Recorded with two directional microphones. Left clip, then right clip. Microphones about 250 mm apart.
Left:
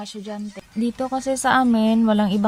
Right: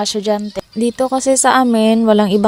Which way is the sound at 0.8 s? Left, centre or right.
Right.